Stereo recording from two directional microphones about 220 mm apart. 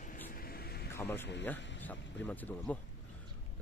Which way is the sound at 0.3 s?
40° left (ahead or behind).